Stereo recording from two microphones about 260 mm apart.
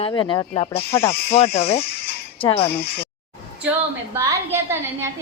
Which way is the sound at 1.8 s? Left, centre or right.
Left.